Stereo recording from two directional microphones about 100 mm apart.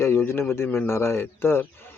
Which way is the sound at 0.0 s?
25° left (ahead or behind).